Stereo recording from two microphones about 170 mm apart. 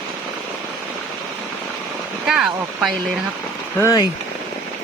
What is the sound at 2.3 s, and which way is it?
Speech, centre (ahead or behind).